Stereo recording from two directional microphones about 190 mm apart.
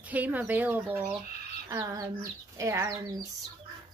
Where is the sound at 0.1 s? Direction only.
10° right (ahead or behind).